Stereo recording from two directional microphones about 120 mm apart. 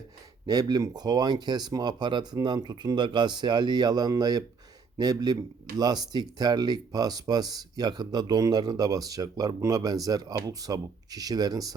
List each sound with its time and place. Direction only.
0.4 s speech: 30° right (ahead or behind)